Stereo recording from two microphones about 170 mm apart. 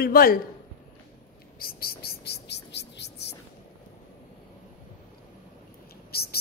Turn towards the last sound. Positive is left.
turn(degrees=65)  # may be behind; listen again after turning